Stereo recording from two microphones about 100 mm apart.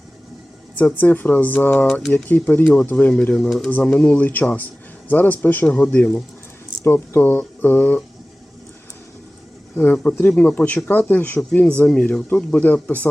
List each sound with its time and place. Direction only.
0.8 s speech: 20° left (ahead or behind)
6.8 s speech: 25° left (ahead or behind)
9.7 s speech: 20° left (ahead or behind)